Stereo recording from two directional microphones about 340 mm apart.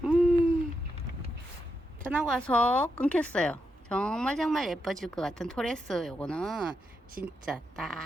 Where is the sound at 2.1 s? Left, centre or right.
Centre.